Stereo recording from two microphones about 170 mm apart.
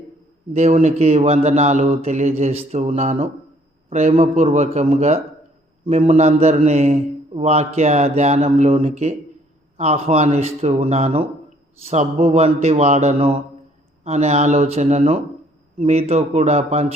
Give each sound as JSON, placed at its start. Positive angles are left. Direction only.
{"t": 0.5, "sound": "a man's voice", "side_deg": -40}